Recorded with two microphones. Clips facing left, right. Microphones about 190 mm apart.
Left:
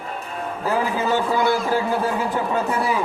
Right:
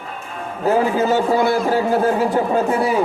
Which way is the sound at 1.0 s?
35° right (ahead or behind).